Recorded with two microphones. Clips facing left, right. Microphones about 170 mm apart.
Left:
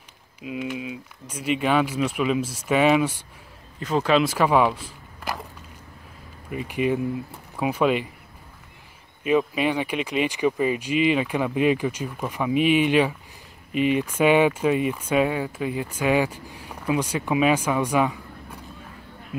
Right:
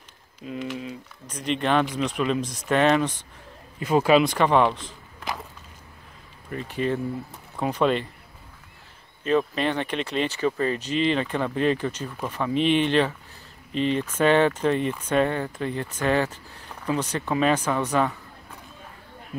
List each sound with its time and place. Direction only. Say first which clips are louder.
0.4 s speech: left 2 dB; 10° left (ahead or behind)
3.8 s speech: right 2 dB; 10° right (ahead or behind)
4.2 s speech: even; 5° left (ahead or behind)
6.5 s speech: left 2 dB; 10° left (ahead or behind)
9.2 s speech: left 1 dB; 10° left (ahead or behind)